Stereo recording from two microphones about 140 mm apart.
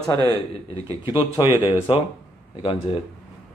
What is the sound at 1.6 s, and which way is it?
Speech, 40° left (ahead or behind).